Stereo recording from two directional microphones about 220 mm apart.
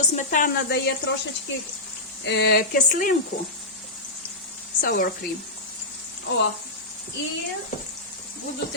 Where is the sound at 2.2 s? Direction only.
50° left (ahead or behind).